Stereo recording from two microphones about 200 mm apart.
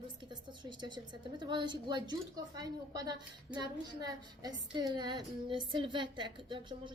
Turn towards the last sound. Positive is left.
turn(degrees=-25)  # may be behind; listen again after turning